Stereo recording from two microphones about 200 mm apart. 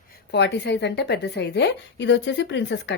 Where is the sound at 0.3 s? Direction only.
55° left (ahead or behind).